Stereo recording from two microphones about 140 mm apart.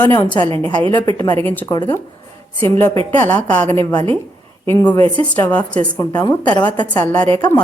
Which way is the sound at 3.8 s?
30° left (ahead or behind).